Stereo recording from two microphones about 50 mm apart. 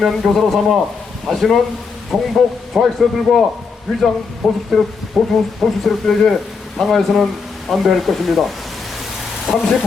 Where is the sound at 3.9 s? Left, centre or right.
Centre.